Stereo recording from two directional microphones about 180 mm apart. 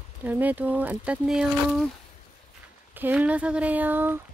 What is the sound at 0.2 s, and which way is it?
Speech, 10° right (ahead or behind).